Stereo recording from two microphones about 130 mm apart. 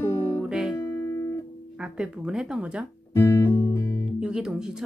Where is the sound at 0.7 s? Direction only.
20° left (ahead or behind).